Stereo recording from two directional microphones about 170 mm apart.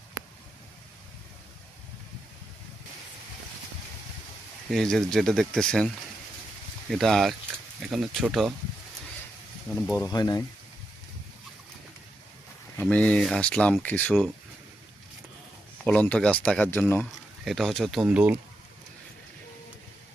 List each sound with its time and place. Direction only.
4.7 s speech: centre (ahead or behind)
6.9 s speech: centre (ahead or behind)
10.0 s speech: 20° left (ahead or behind)
12.8 s speech: 5° left (ahead or behind)
15.8 s speech: 5° left (ahead or behind)